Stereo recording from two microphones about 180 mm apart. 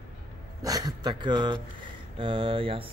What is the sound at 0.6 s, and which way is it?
Speech, 20° right (ahead or behind).